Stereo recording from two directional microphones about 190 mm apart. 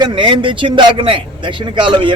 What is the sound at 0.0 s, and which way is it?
Speech, 25° right (ahead or behind).